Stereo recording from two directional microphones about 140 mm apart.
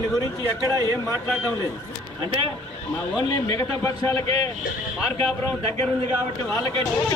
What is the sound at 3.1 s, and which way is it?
A man's voice, 25° left (ahead or behind).